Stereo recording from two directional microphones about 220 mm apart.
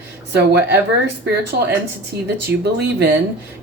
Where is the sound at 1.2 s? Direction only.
50° right (ahead or behind).